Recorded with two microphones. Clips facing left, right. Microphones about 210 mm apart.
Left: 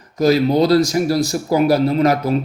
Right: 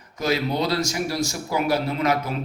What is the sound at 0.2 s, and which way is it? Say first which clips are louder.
Speech: left 10 dB; 40° left (ahead or behind).